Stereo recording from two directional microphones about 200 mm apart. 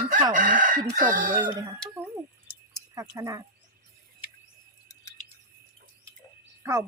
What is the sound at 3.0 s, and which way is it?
Speech, 10° right (ahead or behind).